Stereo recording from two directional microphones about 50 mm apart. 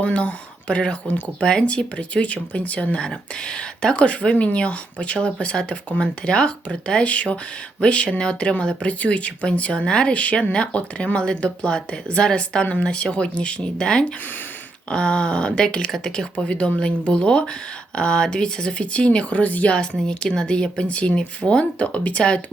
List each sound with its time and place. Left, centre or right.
0.0 s speech: left
20.0 s speech: centre